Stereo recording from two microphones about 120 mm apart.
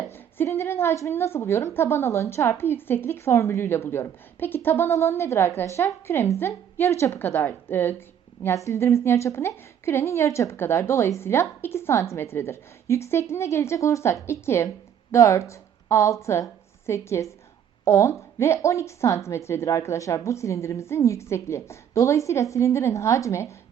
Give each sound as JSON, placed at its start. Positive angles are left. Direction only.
{"t": 0.1, "sound": "a woman's voice", "side_deg": 20}